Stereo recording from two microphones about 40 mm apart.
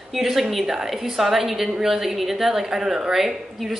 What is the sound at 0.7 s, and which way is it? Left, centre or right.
A woman's voice, centre.